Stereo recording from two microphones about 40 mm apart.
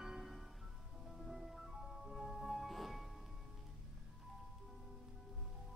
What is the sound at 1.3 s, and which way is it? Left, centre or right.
Music, centre.